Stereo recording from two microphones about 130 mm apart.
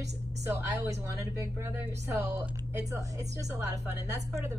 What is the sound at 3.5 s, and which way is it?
Speech, 25° right (ahead or behind).